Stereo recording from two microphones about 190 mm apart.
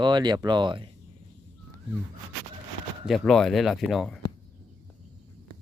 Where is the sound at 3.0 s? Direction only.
Centre (ahead or behind).